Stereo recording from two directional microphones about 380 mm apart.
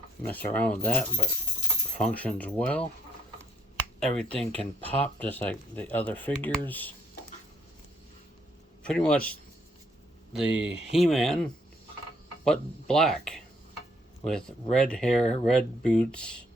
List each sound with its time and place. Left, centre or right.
0.2 s speech: centre
3.8 s finger snapping: centre
4.6 s speech: centre
8.8 s speech: centre
10.3 s speech: centre